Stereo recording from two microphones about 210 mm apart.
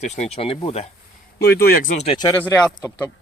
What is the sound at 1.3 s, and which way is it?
Speech, 50° left (ahead or behind).